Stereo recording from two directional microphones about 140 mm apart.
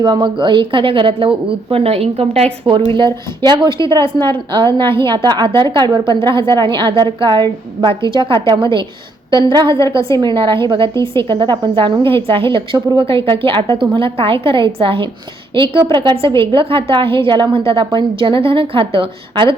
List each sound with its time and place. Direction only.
0.0 s a woman's voice: 30° right (ahead or behind)